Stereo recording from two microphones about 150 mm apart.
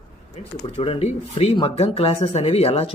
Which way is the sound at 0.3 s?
40° left (ahead or behind).